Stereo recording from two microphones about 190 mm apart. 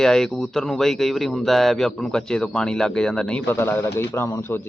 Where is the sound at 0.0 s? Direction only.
5° left (ahead or behind).